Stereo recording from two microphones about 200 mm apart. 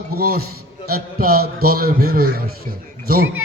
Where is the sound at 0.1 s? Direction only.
50° right (ahead or behind).